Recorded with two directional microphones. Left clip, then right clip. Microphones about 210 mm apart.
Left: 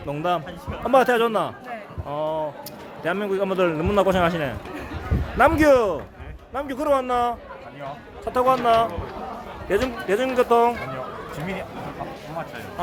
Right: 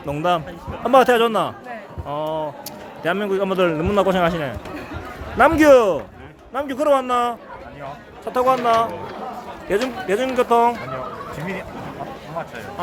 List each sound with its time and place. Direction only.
0.1 s a man's voice: 15° right (ahead or behind)
5.4 s a man's voice: 15° right (ahead or behind)
8.2 s speech: centre (ahead or behind)